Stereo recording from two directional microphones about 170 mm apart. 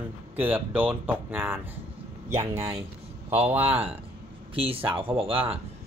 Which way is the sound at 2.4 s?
40° right (ahead or behind).